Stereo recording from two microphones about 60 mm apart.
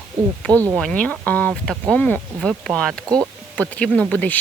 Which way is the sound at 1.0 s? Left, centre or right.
Left.